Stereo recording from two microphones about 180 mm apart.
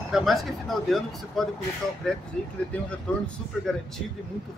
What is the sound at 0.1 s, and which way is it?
A woman's voice, centre (ahead or behind).